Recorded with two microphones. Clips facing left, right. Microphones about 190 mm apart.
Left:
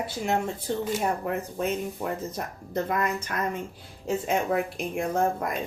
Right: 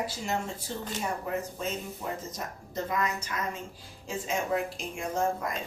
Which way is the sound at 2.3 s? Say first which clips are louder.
Left 6 dB; 55° left (ahead or behind).